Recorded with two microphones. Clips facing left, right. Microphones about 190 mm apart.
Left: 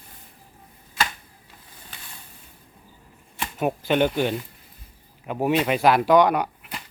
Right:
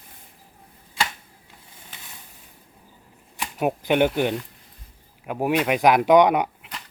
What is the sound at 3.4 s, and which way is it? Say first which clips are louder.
Speech: right 1 dB; 15° right (ahead or behind).